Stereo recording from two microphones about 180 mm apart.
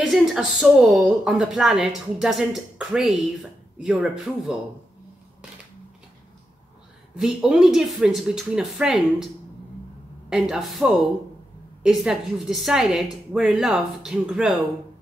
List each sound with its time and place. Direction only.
0.1 s a woman's voice: centre (ahead or behind)
7.2 s a woman's voice: 5° right (ahead or behind)
10.3 s a woman's voice: centre (ahead or behind)